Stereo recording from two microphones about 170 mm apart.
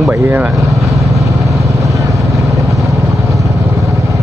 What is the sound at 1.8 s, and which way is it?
Vehicle, 20° right (ahead or behind).